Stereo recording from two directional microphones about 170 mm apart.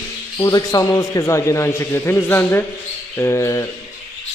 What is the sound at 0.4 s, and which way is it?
A man's voice, 20° left (ahead or behind).